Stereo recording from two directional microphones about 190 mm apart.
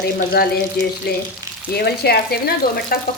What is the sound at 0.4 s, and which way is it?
Speech, 55° left (ahead or behind).